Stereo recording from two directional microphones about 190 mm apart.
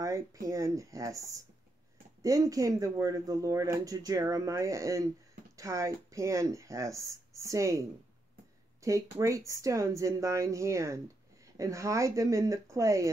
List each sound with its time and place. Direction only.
0.0 s speech: 15° right (ahead or behind)
8.8 s speech: 15° right (ahead or behind)